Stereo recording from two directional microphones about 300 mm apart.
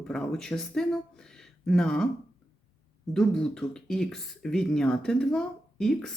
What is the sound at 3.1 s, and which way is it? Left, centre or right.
Speech, centre.